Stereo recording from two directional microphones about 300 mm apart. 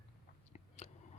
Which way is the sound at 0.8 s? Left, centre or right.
Left.